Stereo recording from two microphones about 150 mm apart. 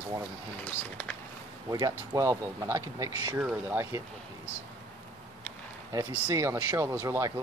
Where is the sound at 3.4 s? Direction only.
10° right (ahead or behind).